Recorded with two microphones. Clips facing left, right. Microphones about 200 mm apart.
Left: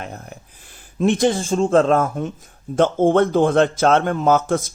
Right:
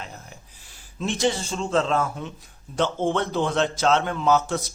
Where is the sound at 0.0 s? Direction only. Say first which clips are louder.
Left 7 dB; 55° left (ahead or behind).